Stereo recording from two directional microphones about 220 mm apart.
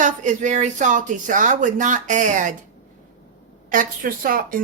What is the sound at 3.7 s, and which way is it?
Speech, 40° right (ahead or behind).